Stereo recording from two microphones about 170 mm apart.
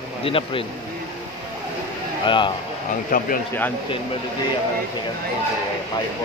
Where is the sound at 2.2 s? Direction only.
30° left (ahead or behind).